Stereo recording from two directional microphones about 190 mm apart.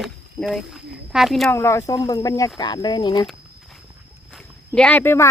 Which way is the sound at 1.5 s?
15° left (ahead or behind).